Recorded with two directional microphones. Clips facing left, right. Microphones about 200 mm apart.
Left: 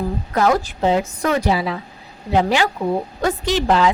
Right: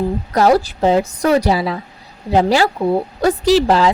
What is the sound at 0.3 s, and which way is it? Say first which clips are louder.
A woman's voice: right 4 dB; 35° right (ahead or behind).